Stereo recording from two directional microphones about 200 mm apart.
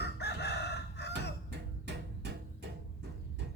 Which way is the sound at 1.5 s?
60° right (ahead or behind).